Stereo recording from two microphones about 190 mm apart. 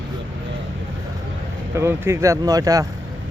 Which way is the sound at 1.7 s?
15° right (ahead or behind).